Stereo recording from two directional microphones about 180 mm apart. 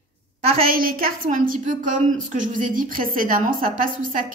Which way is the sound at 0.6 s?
55° right (ahead or behind).